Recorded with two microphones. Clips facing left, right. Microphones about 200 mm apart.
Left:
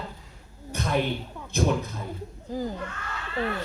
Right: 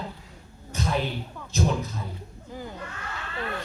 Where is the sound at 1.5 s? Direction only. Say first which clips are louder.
Left 1 dB; 55° left (ahead or behind).